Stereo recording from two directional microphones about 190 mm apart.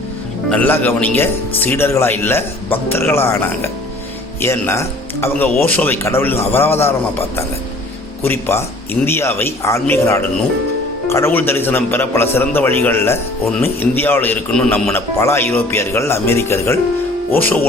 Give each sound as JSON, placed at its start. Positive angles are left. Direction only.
{"t": 0.5, "sound": "a man's voice", "side_deg": 10}